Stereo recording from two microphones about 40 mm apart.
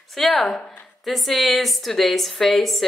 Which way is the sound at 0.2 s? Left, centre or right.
Centre.